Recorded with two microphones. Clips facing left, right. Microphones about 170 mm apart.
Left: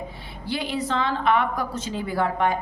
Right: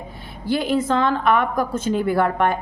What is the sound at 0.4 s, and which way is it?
A woman's voice, 50° right (ahead or behind).